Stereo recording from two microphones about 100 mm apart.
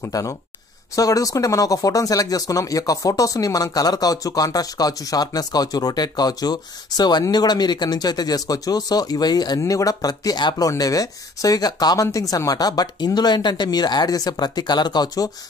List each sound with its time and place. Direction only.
0.0 s speech: 35° left (ahead or behind)